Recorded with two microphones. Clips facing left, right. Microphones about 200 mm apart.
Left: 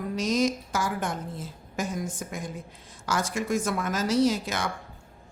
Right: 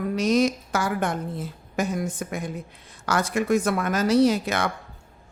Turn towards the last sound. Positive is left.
turn(degrees=-60)  # may be behind; listen again after turning